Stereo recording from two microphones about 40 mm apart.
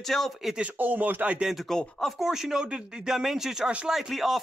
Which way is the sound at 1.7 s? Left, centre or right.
Centre.